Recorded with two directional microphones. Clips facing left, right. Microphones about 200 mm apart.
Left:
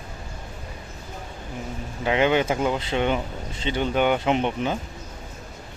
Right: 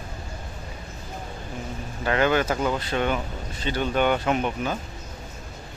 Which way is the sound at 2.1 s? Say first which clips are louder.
Left 1 dB; 20° left (ahead or behind).